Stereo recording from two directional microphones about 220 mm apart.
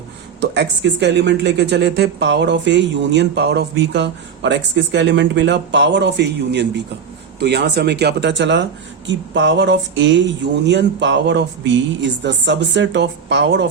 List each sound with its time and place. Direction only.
0.5 s speech: 50° right (ahead or behind)